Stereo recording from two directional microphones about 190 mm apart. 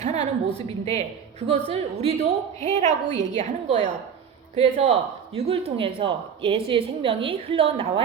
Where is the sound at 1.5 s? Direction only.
30° right (ahead or behind).